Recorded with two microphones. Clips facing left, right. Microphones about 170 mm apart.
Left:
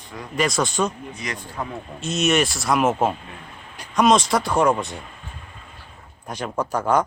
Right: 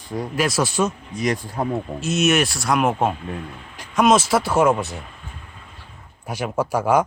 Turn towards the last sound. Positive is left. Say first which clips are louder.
# right 2 dB
turn(degrees=-10)  # may be behind; listen again after turning